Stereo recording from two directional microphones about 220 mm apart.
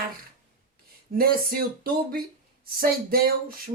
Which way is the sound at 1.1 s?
40° right (ahead or behind).